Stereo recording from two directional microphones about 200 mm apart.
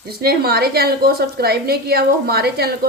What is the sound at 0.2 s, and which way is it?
A woman's voice, 50° right (ahead or behind).